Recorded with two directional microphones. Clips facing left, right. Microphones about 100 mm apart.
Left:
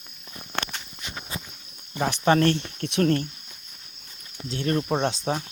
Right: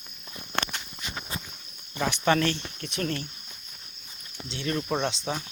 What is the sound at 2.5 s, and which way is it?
Speech, 60° left (ahead or behind).